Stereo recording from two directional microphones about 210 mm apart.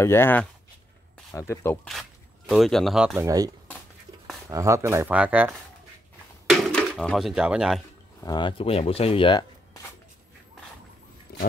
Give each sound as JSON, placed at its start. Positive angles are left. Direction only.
{"t": 0.0, "sound": "speech", "side_deg": 10}
{"t": 1.9, "sound": "speech", "side_deg": 0}
{"t": 3.2, "sound": "speech", "side_deg": -15}
{"t": 6.5, "sound": "speech", "side_deg": 5}
{"t": 8.2, "sound": "speech", "side_deg": 20}
{"t": 11.3, "sound": "roaring cats", "side_deg": 45}